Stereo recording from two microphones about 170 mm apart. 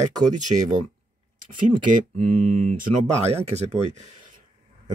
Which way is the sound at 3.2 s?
40° right (ahead or behind).